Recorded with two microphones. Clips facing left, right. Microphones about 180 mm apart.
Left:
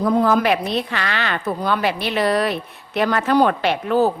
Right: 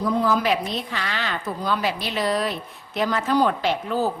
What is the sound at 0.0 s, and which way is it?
A woman's voice, 55° left (ahead or behind).